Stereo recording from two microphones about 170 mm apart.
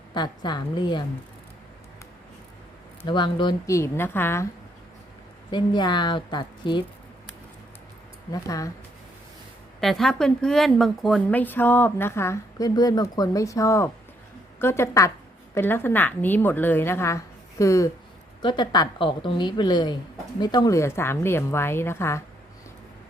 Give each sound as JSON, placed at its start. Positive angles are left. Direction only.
{"t": 0.1, "sound": "a woman's voice", "side_deg": 25}
{"t": 3.0, "sound": "a woman's voice", "side_deg": 30}
{"t": 5.5, "sound": "a woman's voice", "side_deg": 25}
{"t": 8.3, "sound": "a woman's voice", "side_deg": 20}
{"t": 9.8, "sound": "a woman's voice", "side_deg": 0}